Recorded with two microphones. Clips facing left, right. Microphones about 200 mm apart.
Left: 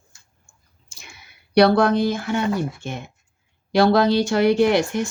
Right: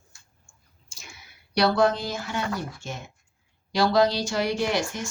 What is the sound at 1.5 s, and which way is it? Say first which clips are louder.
A woman's voice: left 6 dB; 60° left (ahead or behind).